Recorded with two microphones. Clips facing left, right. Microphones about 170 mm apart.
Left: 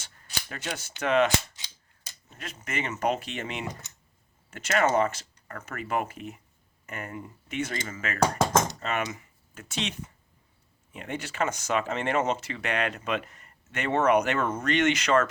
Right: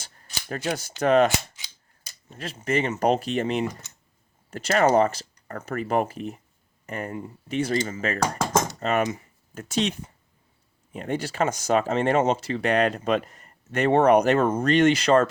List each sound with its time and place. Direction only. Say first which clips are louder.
0.4 s speech: right 9 dB; 40° right (ahead or behind)
2.4 s speech: right 9 dB; 30° right (ahead or behind)
10.9 s speech: right 6 dB; 35° right (ahead or behind)